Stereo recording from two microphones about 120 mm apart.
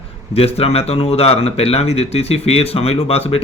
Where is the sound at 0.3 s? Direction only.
55° left (ahead or behind).